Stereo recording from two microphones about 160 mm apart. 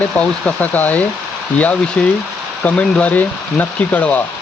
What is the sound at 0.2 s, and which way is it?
Speech, 10° left (ahead or behind).